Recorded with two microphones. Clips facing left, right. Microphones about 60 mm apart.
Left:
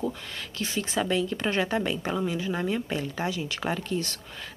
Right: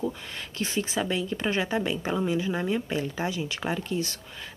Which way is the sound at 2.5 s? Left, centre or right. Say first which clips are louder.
Right 1 dB; centre.